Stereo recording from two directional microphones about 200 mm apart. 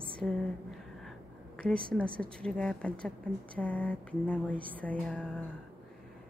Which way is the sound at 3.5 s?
5° left (ahead or behind).